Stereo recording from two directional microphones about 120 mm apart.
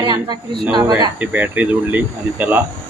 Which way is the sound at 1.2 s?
15° right (ahead or behind).